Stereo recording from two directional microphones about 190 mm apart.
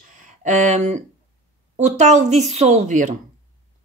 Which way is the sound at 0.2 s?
40° right (ahead or behind).